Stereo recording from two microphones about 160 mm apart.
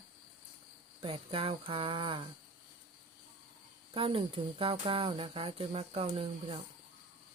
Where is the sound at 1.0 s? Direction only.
35° right (ahead or behind).